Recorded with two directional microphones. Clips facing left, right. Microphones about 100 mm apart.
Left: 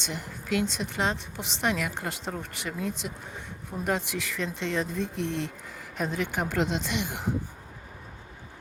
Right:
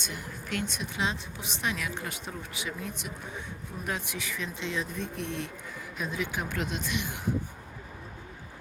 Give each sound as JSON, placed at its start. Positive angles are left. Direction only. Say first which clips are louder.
{"t": 0.0, "sound": "a woman's voice", "louder": "left 3 dB", "side_deg": 85}
{"t": 2.4, "sound": "a woman's voice", "louder": "left 4 dB", "side_deg": 75}
{"t": 6.0, "sound": "speech", "louder": "left 4 dB", "side_deg": 70}